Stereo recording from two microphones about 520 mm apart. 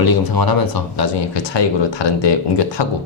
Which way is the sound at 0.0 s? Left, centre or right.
Left.